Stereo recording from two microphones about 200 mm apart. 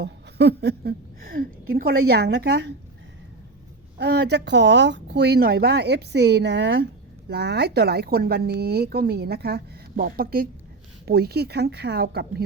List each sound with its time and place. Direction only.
0.0 s speech: 60° right (ahead or behind)
3.9 s speech: 55° right (ahead or behind)